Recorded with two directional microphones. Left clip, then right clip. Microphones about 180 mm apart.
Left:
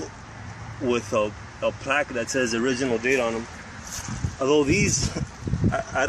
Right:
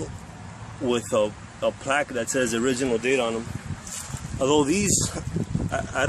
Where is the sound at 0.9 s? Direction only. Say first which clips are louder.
Right 1 dB; 15° right (ahead or behind).